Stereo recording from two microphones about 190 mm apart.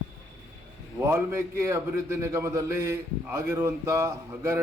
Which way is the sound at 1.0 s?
15° right (ahead or behind).